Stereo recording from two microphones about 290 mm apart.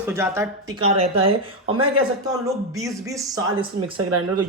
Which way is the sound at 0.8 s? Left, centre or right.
Centre.